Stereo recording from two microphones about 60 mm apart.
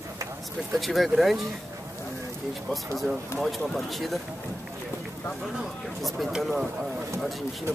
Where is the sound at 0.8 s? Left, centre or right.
Centre.